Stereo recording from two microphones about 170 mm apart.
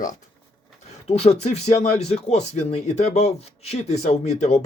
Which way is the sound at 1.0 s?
35° left (ahead or behind).